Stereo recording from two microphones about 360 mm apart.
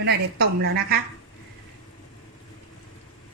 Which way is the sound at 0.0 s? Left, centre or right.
Right.